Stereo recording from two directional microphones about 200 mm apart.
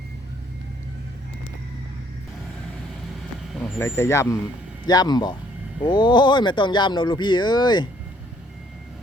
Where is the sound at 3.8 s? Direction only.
10° left (ahead or behind).